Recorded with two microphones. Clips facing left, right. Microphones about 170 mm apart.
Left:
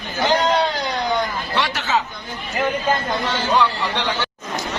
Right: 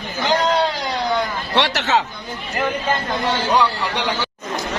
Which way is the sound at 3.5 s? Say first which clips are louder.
Left 2 dB; 10° right (ahead or behind).